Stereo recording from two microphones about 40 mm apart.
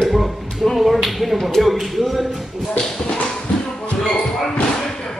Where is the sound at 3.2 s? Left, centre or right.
Left.